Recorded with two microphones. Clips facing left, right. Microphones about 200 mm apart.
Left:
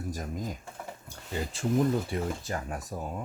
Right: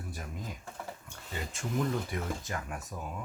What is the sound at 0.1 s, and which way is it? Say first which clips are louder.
Speech: left 8 dB; 40° left (ahead or behind).